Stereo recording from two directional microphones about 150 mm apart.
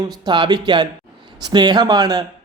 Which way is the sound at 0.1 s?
30° right (ahead or behind).